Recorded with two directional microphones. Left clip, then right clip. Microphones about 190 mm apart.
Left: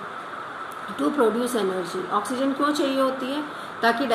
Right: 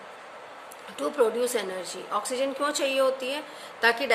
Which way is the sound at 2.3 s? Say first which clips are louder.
Left 4 dB; 25° right (ahead or behind).